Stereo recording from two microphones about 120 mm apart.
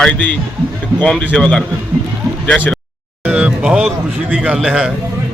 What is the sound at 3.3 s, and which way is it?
Speech, 10° right (ahead or behind).